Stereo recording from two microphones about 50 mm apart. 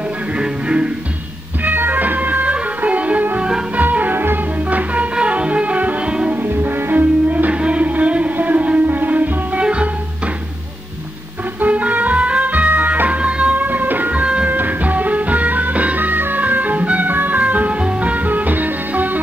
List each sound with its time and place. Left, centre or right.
0.3 s music: right
1.6 s music: right
4.6 s music: right
6.3 s music: right
7.5 s music: right
11.6 s music: right
13.6 s music: right
14.2 s music: right
14.5 s music: right